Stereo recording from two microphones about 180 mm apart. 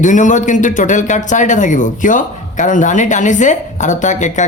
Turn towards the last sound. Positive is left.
turn(degrees=45)  # may be behind; listen again after turning